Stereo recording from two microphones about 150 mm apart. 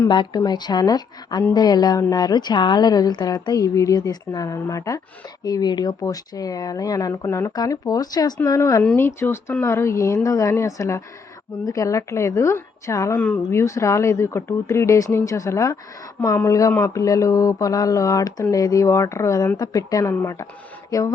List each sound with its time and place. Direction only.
0.1 s a woman's voice: 30° left (ahead or behind)